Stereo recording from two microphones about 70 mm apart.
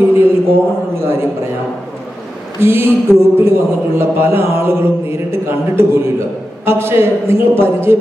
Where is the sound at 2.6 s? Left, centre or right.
Right.